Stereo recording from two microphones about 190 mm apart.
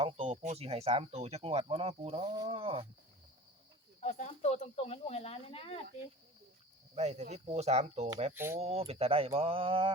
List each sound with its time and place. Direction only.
0.0 s speech: 30° right (ahead or behind)
4.0 s speech: 35° left (ahead or behind)
6.9 s speech: 35° right (ahead or behind)
8.3 s speech: 10° right (ahead or behind)
8.5 s speech: 35° right (ahead or behind)